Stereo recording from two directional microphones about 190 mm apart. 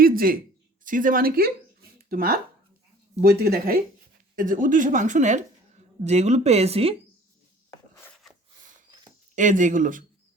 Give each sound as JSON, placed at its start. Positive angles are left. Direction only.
{"t": 0.0, "sound": "a sound", "side_deg": -50}
{"t": 0.9, "sound": "a woman's voice", "side_deg": -45}
{"t": 9.3, "sound": "speech", "side_deg": -40}